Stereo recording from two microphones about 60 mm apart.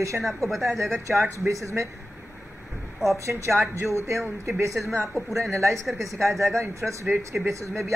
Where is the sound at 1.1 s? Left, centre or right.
Right.